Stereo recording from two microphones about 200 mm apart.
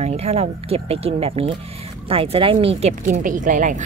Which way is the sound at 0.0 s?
30° right (ahead or behind).